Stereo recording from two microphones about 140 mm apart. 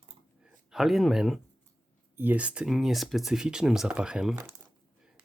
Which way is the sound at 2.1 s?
10° right (ahead or behind).